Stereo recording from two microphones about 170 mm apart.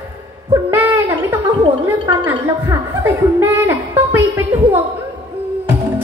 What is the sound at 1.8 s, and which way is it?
A woman's voice, 15° right (ahead or behind).